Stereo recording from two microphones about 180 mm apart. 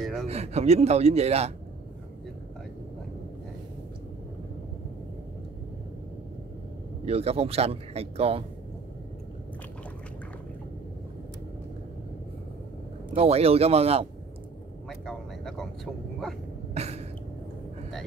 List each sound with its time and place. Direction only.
0.0 s a sound: centre (ahead or behind)
0.3 s speech: 35° right (ahead or behind)
7.1 s speech: 35° right (ahead or behind)
13.1 s speech: 35° right (ahead or behind)
14.9 s speech: centre (ahead or behind)
16.7 s cough: 35° right (ahead or behind)